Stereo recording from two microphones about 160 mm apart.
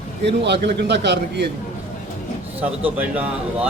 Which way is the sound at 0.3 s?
90° right.